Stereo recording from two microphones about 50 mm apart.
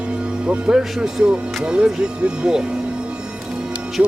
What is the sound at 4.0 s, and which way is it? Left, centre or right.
Speech, right.